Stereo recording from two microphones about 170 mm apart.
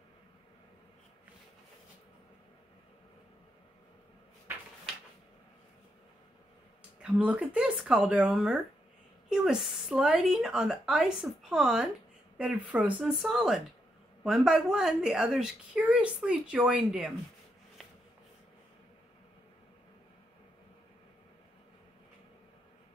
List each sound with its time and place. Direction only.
7.0 s a woman's voice: 5° right (ahead or behind)